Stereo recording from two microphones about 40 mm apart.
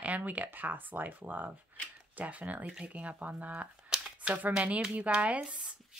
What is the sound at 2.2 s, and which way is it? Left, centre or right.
Speech, right.